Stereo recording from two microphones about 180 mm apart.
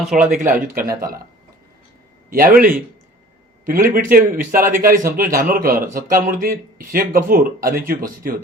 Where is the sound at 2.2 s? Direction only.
50° right (ahead or behind).